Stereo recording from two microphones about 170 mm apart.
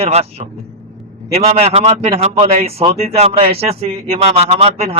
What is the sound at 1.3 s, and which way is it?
A man's voice, 40° right (ahead or behind).